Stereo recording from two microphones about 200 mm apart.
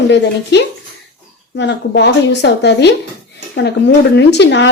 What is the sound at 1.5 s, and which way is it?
A woman's voice, 60° left (ahead or behind).